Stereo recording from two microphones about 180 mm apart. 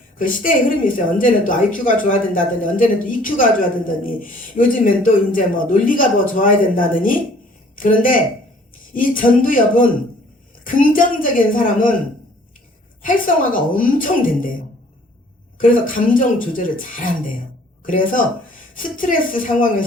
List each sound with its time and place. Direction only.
0.2 s a woman's voice: 50° left (ahead or behind)
10.6 s a sound: 50° left (ahead or behind)
13.0 s a woman's voice: 50° left (ahead or behind)
15.5 s a woman's voice: 50° left (ahead or behind)